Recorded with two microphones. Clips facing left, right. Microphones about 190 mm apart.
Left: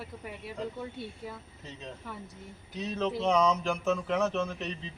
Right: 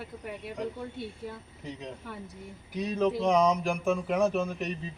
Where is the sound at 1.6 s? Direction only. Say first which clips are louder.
Right 4 dB; 15° right (ahead or behind).